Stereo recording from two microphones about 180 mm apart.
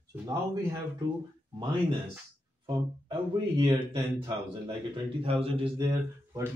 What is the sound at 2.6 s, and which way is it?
A man's voice, 25° right (ahead or behind).